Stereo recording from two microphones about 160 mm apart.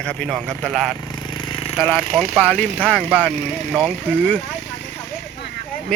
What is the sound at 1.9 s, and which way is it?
Speech, centre (ahead or behind).